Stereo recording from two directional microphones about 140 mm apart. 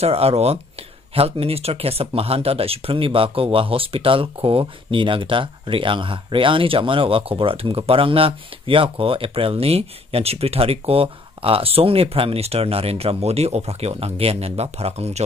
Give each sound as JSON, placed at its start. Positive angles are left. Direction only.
{"t": 0.0, "sound": "speech", "side_deg": -45}